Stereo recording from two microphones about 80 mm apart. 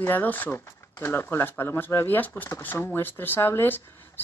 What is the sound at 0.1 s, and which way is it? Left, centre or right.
Speech, left.